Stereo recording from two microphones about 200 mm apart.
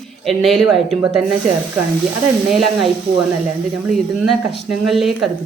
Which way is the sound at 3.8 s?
Centre (ahead or behind).